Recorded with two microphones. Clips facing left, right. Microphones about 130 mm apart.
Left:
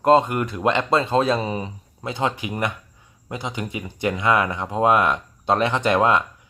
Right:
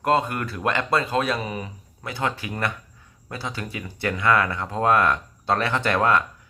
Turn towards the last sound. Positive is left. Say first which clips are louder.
# left 2 dB
turn(degrees=20)  # may be behind; listen again after turning